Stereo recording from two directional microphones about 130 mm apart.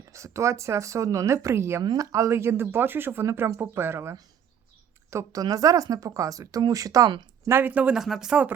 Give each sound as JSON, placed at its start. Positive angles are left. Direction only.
{"t": 0.0, "sound": "speech", "side_deg": -25}
{"t": 1.8, "sound": "speech", "side_deg": -30}
{"t": 7.4, "sound": "speech", "side_deg": -15}